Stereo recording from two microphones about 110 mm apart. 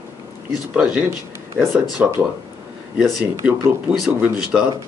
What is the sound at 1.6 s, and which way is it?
Speech, 5° right (ahead or behind).